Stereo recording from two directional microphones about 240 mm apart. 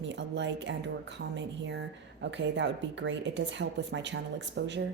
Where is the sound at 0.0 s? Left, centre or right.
Right.